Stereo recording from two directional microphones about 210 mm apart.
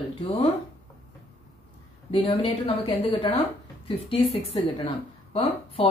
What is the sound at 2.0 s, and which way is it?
Speech, 25° left (ahead or behind).